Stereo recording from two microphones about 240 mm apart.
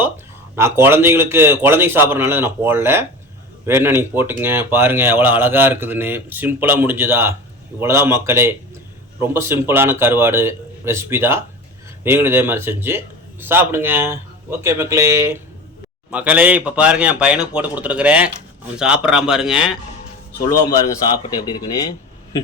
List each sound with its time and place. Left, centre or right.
0.5 s a man's voice: centre
20.7 s a man's voice: centre